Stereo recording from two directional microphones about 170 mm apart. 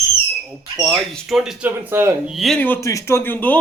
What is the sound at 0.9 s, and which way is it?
A man's voice, centre (ahead or behind).